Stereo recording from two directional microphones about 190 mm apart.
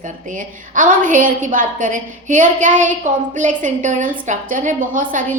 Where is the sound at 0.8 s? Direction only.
45° right (ahead or behind).